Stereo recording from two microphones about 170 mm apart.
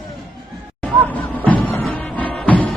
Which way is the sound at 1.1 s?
10° left (ahead or behind).